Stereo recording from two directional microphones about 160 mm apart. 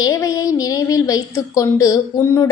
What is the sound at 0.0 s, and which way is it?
A woman's voice, 20° left (ahead or behind).